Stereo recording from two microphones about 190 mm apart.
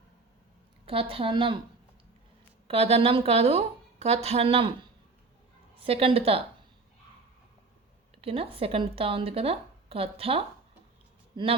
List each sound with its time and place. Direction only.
0.9 s a woman's voice: 30° right (ahead or behind)
2.6 s a woman's voice: 30° right (ahead or behind)
8.2 s a woman's voice: 30° right (ahead or behind)